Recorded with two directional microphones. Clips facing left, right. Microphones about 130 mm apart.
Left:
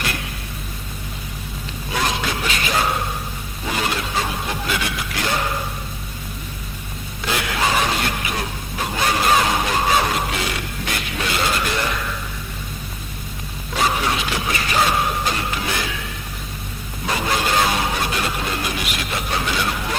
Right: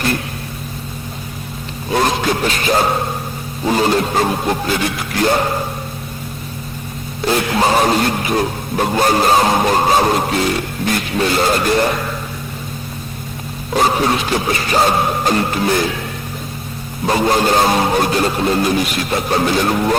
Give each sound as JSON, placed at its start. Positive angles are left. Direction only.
{"t": 1.9, "sound": "speech", "side_deg": -40}
{"t": 3.7, "sound": "music", "side_deg": -35}
{"t": 7.3, "sound": "speech", "side_deg": -35}
{"t": 13.7, "sound": "speech", "side_deg": -40}
{"t": 17.1, "sound": "speech", "side_deg": -40}